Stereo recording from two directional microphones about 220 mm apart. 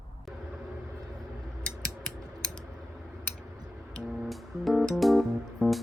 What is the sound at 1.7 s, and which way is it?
Mechanisms, 5° left (ahead or behind).